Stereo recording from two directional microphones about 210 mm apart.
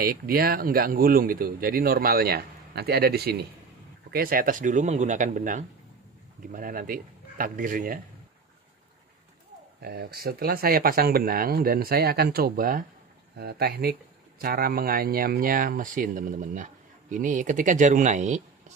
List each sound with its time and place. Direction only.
0.0 s speech: 45° right (ahead or behind)
9.8 s speech: 50° right (ahead or behind)